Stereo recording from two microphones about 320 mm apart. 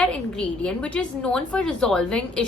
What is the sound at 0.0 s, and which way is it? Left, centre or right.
A woman's voice, centre.